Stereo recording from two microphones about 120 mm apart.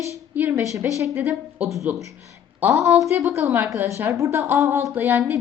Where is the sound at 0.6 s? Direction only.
25° right (ahead or behind).